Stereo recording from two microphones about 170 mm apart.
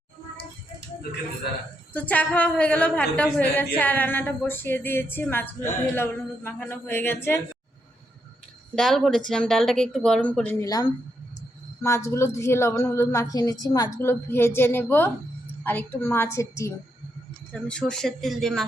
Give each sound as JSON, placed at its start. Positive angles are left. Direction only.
{"t": 1.9, "sound": "a woman's voice", "side_deg": 10}
{"t": 8.7, "sound": "a woman's voice", "side_deg": 0}
{"t": 17.5, "sound": "speech", "side_deg": 5}